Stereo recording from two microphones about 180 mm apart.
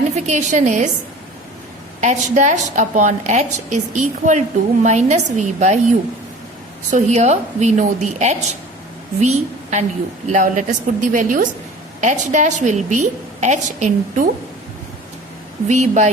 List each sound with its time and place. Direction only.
0.1 s a woman's voice: 40° right (ahead or behind)
2.0 s a woman's voice: 40° right (ahead or behind)
6.9 s a woman's voice: 40° right (ahead or behind)
15.6 s a woman's voice: 40° right (ahead or behind)